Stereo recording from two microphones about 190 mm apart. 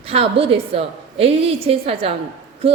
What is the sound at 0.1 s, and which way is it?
A woman's voice, 30° right (ahead or behind).